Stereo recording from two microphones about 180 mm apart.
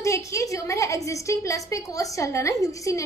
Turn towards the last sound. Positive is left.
turn(degrees=20)  # may be behind; listen again after turning